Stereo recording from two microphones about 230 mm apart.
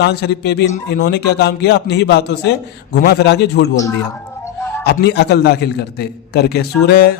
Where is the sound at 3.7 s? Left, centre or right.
Centre.